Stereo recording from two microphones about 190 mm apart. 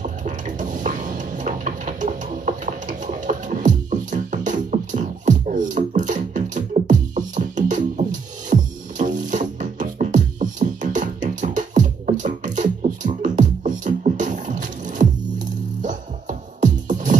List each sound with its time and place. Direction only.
0.0 s music: 40° right (ahead or behind)